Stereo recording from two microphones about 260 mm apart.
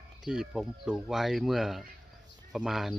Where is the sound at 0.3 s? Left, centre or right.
Centre.